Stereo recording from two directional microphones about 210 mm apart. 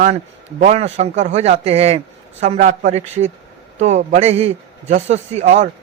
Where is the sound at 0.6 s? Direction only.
30° right (ahead or behind).